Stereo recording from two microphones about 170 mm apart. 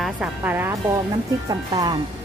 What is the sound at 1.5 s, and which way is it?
Speech, 20° right (ahead or behind).